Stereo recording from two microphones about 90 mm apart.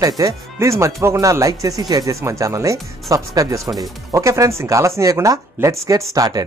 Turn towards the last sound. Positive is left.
turn(degrees=-45)  # may be behind; listen again after turning